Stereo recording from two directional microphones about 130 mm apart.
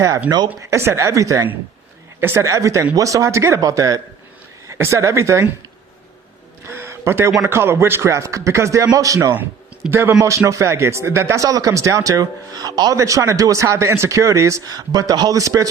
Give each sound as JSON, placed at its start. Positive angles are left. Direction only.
{"t": 0.3, "sound": "speech", "side_deg": -30}
{"t": 6.7, "sound": "a sound", "side_deg": -20}
{"t": 7.4, "sound": "speech", "side_deg": -20}
{"t": 9.3, "sound": "speech", "side_deg": -15}